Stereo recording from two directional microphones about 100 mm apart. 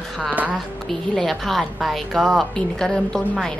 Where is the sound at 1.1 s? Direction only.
5° left (ahead or behind).